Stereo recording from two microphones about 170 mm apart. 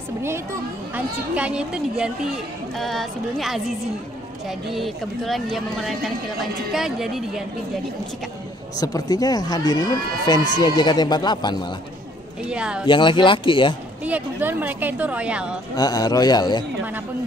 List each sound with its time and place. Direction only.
0.9 s speech: 10° right (ahead or behind)
8.7 s speech: 20° left (ahead or behind)
12.4 s speech: 5° right (ahead or behind)
12.8 s speech: 30° left (ahead or behind)
14.0 s a woman's voice: 10° right (ahead or behind)
15.7 s speech: 20° left (ahead or behind)